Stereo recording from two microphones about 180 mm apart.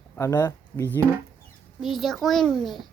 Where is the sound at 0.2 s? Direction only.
15° left (ahead or behind).